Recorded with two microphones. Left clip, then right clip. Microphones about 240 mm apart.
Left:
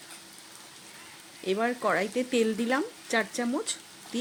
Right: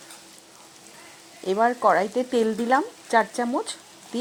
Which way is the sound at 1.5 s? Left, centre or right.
Centre.